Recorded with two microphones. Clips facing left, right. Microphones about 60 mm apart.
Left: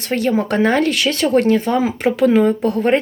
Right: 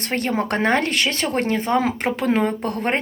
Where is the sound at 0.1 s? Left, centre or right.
Right.